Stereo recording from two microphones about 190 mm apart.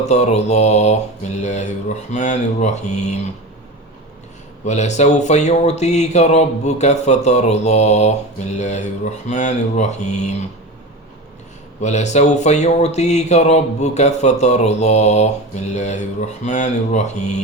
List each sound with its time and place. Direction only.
0.0 s speech: 35° left (ahead or behind)
4.6 s speech: 40° left (ahead or behind)
11.8 s speech: 40° left (ahead or behind)